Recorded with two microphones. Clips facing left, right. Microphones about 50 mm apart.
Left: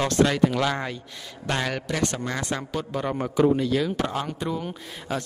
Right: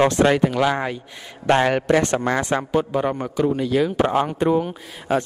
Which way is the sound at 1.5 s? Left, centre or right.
Right.